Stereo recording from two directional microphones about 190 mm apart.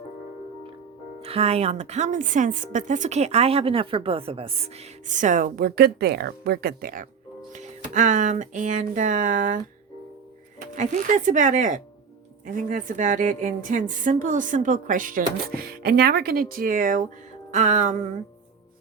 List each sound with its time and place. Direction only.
1.2 s a woman's voice: 30° right (ahead or behind)
10.8 s a woman's voice: 40° right (ahead or behind)